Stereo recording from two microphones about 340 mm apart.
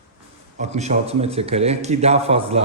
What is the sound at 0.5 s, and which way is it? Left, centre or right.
A man's voice, centre.